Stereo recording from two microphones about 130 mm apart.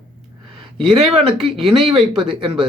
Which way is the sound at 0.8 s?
Centre (ahead or behind).